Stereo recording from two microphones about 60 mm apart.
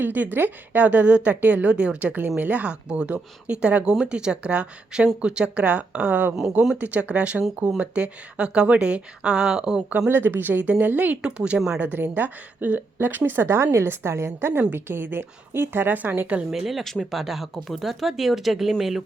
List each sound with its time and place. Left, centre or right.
0.0 s a woman's voice: right; by 9.8 s centre
10.1 s a woman's voice: right
11.2 s speech: centre
11.8 s a woman's voice: right
16.3 s speech: centre
16.6 s speech: centre